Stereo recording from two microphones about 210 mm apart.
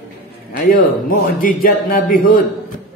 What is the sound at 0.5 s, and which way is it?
A man's voice, 40° left (ahead or behind).